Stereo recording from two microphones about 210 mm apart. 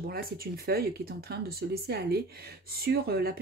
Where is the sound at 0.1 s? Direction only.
45° right (ahead or behind).